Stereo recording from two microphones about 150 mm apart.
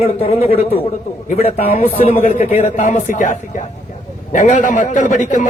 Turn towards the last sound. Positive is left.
turn(degrees=55)  # may be behind; listen again after turning